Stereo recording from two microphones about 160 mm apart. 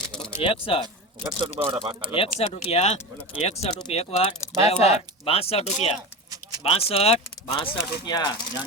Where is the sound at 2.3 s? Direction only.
45° left (ahead or behind).